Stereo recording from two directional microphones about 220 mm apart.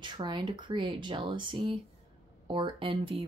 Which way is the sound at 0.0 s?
20° right (ahead or behind).